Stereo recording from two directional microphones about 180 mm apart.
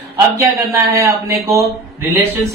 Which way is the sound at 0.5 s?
15° right (ahead or behind).